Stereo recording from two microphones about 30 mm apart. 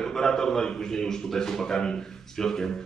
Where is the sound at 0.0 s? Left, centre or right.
Centre.